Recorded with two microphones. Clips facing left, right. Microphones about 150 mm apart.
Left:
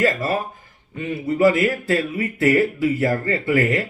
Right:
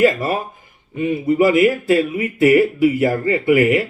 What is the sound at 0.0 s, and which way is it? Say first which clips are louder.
Speech: right 4 dB; 15° right (ahead or behind).